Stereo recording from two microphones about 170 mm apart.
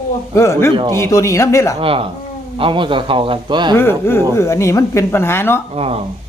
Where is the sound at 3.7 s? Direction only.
15° left (ahead or behind).